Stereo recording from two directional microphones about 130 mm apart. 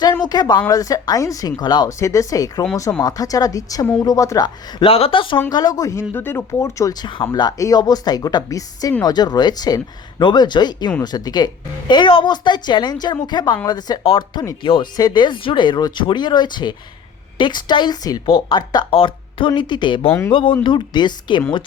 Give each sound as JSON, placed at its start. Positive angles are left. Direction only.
{"t": 0.2, "sound": "speech", "side_deg": 30}
{"t": 4.8, "sound": "speech", "side_deg": 45}
{"t": 5.5, "sound": "speech", "side_deg": 30}
{"t": 20.1, "sound": "speech", "side_deg": 20}
{"t": 20.3, "sound": "speech", "side_deg": 40}